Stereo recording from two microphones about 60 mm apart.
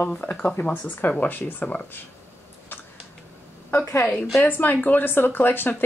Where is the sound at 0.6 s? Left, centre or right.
Centre.